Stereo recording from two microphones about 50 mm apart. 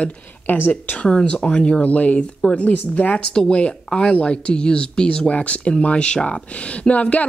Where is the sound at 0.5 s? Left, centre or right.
Left.